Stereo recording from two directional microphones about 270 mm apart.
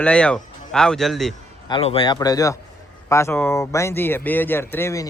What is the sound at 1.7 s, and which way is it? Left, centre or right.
A man's voice, left.